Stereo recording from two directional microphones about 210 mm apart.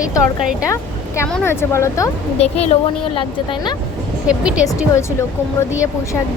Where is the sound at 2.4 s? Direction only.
30° left (ahead or behind).